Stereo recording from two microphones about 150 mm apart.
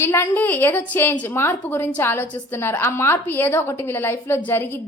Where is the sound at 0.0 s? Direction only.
15° left (ahead or behind).